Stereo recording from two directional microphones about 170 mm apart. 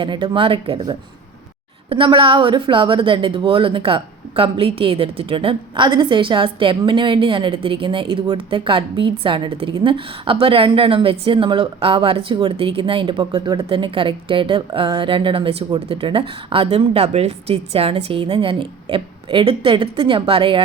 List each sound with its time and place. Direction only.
0.0 s a woman's voice: 30° right (ahead or behind)
1.9 s a woman's voice: 30° right (ahead or behind)